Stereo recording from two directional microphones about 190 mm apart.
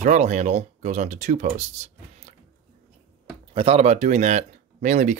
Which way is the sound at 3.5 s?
30° right (ahead or behind).